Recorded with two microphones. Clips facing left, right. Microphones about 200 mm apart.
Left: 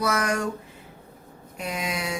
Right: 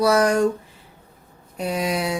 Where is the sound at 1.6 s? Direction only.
35° right (ahead or behind).